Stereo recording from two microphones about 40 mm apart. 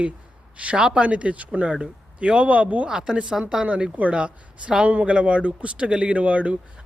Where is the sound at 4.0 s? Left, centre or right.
Right.